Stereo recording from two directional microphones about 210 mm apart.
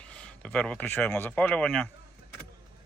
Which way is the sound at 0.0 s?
5° left (ahead or behind).